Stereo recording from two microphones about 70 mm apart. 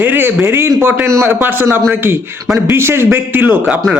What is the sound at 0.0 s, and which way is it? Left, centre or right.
A man's voice, right.